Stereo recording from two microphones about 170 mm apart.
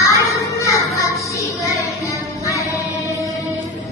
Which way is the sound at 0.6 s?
20° left (ahead or behind).